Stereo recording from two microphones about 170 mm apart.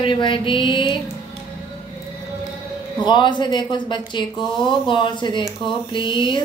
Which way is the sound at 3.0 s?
25° left (ahead or behind).